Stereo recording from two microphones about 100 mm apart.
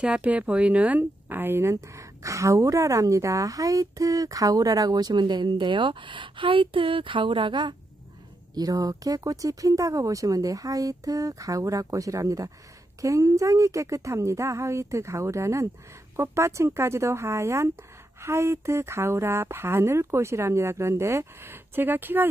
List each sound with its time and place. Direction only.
0.0 s speech: 10° right (ahead or behind); by 7.7 s 55° right (ahead or behind)
8.5 s speech: 40° right (ahead or behind); by 22.3 s 20° right (ahead or behind)